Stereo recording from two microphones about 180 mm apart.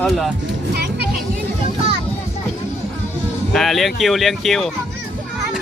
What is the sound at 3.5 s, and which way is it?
Speech, centre (ahead or behind).